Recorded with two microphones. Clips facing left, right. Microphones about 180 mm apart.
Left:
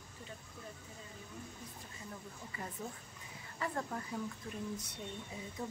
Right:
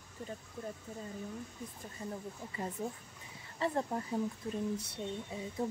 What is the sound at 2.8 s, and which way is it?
Speech, 30° right (ahead or behind).